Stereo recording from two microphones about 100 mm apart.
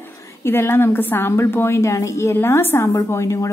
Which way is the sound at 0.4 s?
25° left (ahead or behind).